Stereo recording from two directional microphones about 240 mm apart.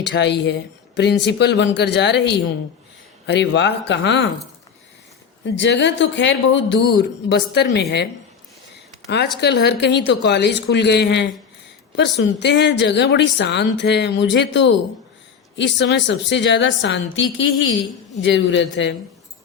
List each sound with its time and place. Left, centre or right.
0.0 s speech: left
5.5 s speech: left
9.0 s speech: left